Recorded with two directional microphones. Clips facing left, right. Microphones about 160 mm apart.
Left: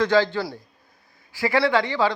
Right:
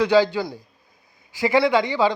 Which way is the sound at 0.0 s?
15° right (ahead or behind).